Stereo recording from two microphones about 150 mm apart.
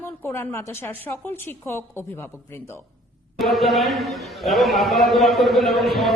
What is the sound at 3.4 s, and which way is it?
A man's voice, centre (ahead or behind).